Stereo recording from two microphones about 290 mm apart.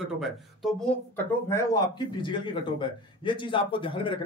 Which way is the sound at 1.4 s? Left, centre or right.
Centre.